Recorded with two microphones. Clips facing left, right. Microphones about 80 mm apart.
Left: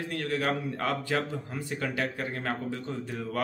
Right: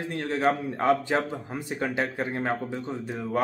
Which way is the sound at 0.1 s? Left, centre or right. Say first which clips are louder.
Right 5 dB; right.